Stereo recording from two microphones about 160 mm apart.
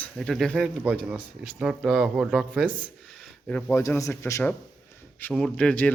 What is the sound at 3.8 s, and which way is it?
Speech, 20° left (ahead or behind).